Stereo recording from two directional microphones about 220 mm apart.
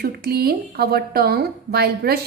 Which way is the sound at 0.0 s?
45° right (ahead or behind).